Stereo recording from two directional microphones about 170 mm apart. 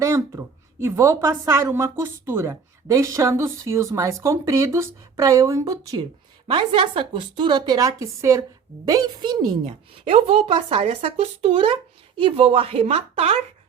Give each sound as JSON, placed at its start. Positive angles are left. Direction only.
{"t": 0.0, "sound": "a woman's voice", "side_deg": -15}